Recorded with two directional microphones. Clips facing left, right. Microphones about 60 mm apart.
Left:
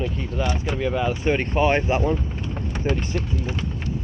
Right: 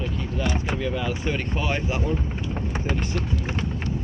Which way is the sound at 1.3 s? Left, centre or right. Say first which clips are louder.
Left 10 dB; left.